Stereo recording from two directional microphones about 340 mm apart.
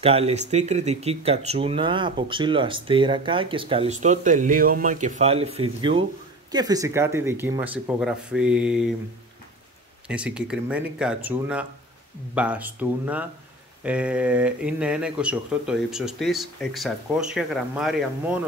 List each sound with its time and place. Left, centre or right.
0.0 s speech: centre
10.0 s speech: centre